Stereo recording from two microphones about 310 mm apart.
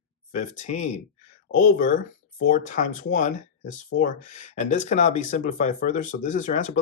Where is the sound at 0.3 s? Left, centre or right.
Left.